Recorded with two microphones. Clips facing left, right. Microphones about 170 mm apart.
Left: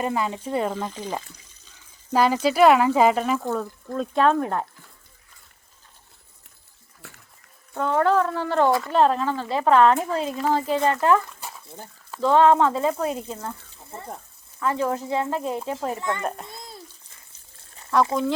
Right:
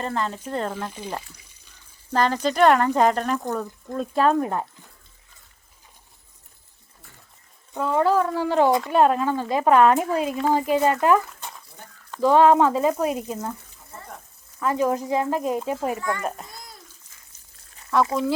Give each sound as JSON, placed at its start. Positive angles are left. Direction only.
{"t": 0.0, "sound": "speech", "side_deg": 10}
{"t": 0.9, "sound": "speech", "side_deg": -10}
{"t": 1.3, "sound": "a sound", "side_deg": -10}
{"t": 2.1, "sound": "speech", "side_deg": 10}
{"t": 7.0, "sound": "a sound", "side_deg": 75}
{"t": 7.7, "sound": "speech", "side_deg": -5}
{"t": 11.3, "sound": "a sound", "side_deg": 5}
{"t": 12.2, "sound": "speech", "side_deg": -10}
{"t": 13.7, "sound": "a sound", "side_deg": 30}
{"t": 14.6, "sound": "speech", "side_deg": -10}
{"t": 16.0, "sound": "a child's voice", "side_deg": 20}
{"t": 16.5, "sound": "bathtub", "side_deg": 25}
{"t": 17.9, "sound": "speech", "side_deg": 0}